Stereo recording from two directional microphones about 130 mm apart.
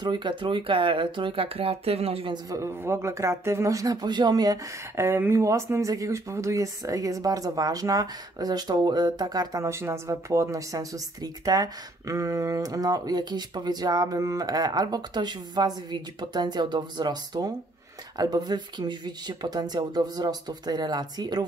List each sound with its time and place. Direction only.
0.0 s speech: 35° right (ahead or behind)
2.3 s speech: 25° right (ahead or behind)